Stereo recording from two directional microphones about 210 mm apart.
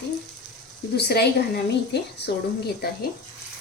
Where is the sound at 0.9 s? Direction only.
50° left (ahead or behind).